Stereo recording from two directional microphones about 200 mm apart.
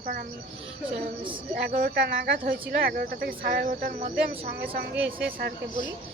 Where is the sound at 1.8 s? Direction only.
55° right (ahead or behind).